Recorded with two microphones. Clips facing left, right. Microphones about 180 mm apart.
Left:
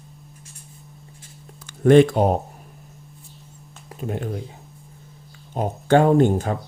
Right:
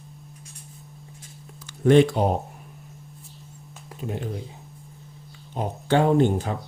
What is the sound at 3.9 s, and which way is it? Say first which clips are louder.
Speech: left 3 dB; 50° left (ahead or behind).